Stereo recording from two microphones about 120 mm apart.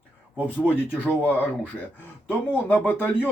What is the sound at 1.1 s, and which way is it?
Speech, 15° left (ahead or behind).